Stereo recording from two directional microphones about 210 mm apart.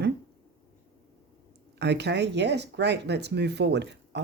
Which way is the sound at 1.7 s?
55° right (ahead or behind).